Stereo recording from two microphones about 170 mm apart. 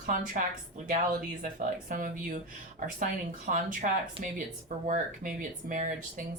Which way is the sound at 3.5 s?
50° right (ahead or behind).